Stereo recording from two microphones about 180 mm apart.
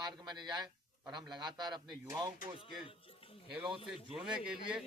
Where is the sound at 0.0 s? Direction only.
25° right (ahead or behind).